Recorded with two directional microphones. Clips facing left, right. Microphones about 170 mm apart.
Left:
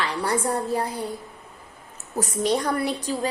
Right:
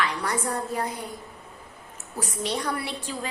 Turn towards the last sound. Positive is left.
turn(degrees=40)  # may be behind; listen again after turning